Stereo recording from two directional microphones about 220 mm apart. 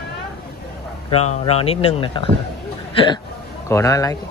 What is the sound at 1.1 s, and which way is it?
Speech, 30° left (ahead or behind).